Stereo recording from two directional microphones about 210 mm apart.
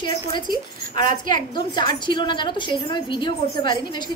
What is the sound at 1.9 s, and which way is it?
A woman's voice, 20° left (ahead or behind).